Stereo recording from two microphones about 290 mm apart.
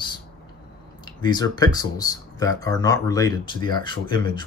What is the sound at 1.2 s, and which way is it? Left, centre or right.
Speech, centre.